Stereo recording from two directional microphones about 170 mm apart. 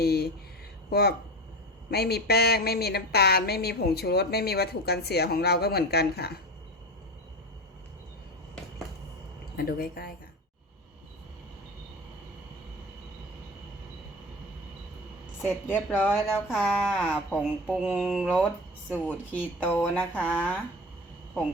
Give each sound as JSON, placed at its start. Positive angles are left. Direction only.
{"t": 0.0, "sound": "a sound", "side_deg": 65}
{"t": 0.9, "sound": "a woman's voice", "side_deg": 65}
{"t": 9.6, "sound": "speech", "side_deg": 65}
{"t": 15.4, "sound": "speech", "side_deg": 10}
{"t": 16.5, "sound": "mantra", "side_deg": -5}
{"t": 17.4, "sound": "mantra", "side_deg": -5}
{"t": 18.9, "sound": "speech", "side_deg": 10}